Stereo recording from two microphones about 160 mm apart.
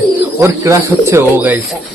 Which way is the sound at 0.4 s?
15° right (ahead or behind).